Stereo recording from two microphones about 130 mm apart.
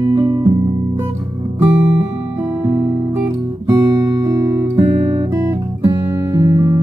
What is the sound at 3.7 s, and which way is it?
Guitar, 25° right (ahead or behind).